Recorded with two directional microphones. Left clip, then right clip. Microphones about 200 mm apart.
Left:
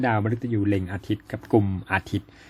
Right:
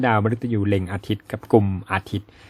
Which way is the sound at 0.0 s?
20° right (ahead or behind).